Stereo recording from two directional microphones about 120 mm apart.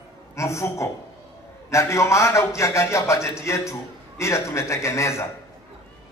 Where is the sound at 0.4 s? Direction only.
25° left (ahead or behind).